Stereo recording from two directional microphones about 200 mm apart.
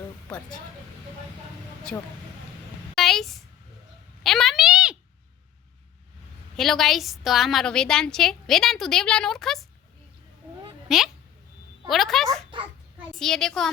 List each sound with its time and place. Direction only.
0.3 s a woman's voice: 5° left (ahead or behind)
1.9 s a woman's voice: 5° left (ahead or behind)
2.9 s a sound: centre (ahead or behind)
6.6 s a woman's voice: centre (ahead or behind)
10.8 s a woman's voice: centre (ahead or behind)
12.3 s a child's voice: 25° right (ahead or behind)
13.1 s a woman's voice: centre (ahead or behind)